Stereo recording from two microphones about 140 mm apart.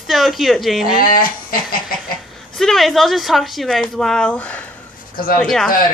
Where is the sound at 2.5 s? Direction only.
Centre (ahead or behind).